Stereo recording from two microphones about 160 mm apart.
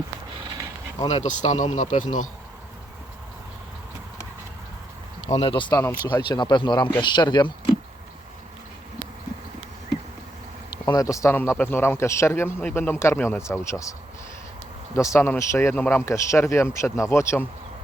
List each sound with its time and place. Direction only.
1.0 s speech: 45° left (ahead or behind)
5.3 s speech: 35° left (ahead or behind)
10.8 s speech: 20° left (ahead or behind)
14.9 s speech: 20° left (ahead or behind)